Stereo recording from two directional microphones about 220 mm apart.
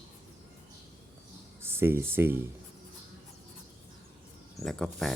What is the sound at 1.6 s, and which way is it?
Speech, 10° right (ahead or behind).